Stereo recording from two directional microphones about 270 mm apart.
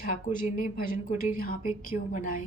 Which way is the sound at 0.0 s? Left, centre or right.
Left.